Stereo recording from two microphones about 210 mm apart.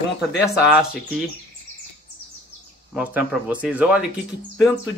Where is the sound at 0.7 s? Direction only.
5° right (ahead or behind).